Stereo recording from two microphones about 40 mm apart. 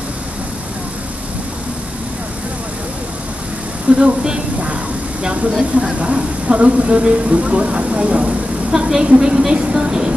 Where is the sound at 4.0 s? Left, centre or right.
Centre.